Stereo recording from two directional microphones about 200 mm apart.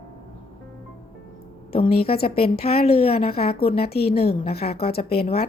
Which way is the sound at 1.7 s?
30° left (ahead or behind).